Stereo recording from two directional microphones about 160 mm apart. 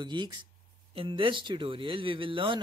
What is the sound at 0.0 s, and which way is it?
Speech, 30° right (ahead or behind).